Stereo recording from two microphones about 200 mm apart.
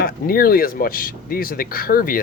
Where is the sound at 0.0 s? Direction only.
45° left (ahead or behind).